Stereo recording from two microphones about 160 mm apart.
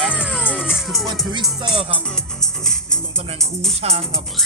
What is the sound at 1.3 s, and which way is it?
Music, 30° right (ahead or behind).